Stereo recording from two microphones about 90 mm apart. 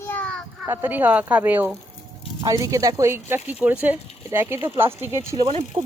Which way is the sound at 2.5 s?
40° right (ahead or behind).